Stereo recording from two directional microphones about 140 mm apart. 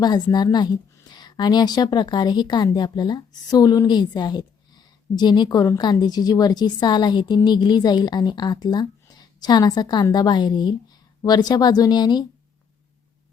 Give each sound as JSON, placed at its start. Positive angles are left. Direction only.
{"t": 0.0, "sound": "a woman's voice", "side_deg": 30}